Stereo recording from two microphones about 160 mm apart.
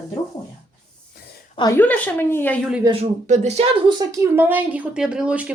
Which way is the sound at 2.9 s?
45° right (ahead or behind).